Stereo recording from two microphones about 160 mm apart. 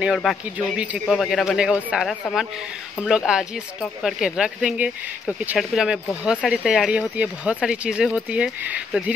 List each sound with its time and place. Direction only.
0.0 s speech: centre (ahead or behind)